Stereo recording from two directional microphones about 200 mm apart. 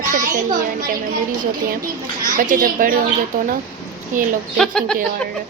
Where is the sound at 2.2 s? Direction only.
40° right (ahead or behind).